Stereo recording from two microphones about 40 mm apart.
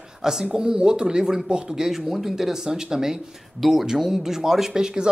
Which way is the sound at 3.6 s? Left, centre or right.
Centre.